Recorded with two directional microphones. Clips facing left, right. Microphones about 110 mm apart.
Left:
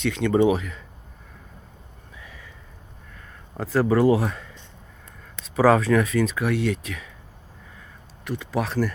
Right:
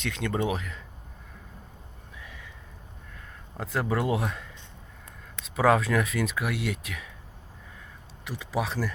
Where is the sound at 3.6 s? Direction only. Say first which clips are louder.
Left 9 dB; centre (ahead or behind).